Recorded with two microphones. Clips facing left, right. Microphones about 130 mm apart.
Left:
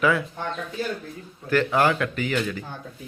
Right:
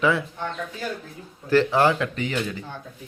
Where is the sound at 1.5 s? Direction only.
30° right (ahead or behind).